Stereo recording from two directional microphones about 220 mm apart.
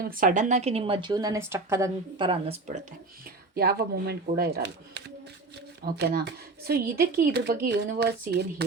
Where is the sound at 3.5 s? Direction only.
45° right (ahead or behind).